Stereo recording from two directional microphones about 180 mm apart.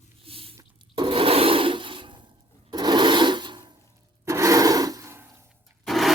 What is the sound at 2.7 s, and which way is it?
Rub, 25° right (ahead or behind).